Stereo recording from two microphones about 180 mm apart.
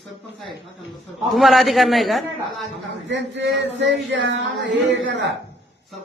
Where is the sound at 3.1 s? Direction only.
80° right.